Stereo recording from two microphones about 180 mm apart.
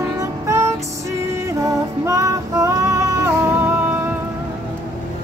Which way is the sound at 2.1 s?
20° right (ahead or behind).